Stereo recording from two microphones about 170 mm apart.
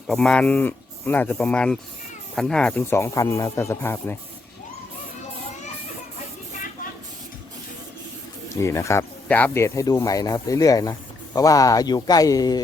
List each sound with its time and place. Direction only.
0.1 s speech: 5° left (ahead or behind)
8.6 s speech: 15° left (ahead or behind)